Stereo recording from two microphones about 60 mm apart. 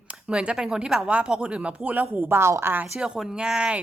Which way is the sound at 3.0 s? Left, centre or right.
Centre.